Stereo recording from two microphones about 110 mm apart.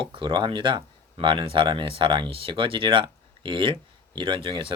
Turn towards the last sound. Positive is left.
turn(degrees=-50)  # may be behind; listen again after turning